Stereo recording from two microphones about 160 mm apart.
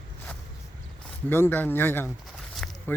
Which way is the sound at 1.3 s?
15° left (ahead or behind).